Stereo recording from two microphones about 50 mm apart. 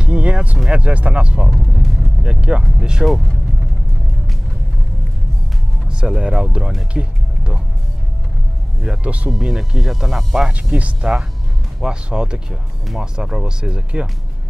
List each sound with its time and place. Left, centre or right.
0.0 s music: right
0.7 s speech: right
1.5 s music: centre
2.2 s speech: centre
5.9 s speech: centre
9.0 s speech: right
9.4 s speech: centre
10.8 s speech: right